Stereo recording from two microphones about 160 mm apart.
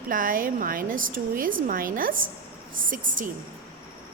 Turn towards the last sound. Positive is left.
turn(degrees=-55)  # may be behind; listen again after turning